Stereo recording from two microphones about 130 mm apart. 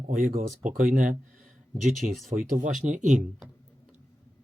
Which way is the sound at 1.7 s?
Centre (ahead or behind).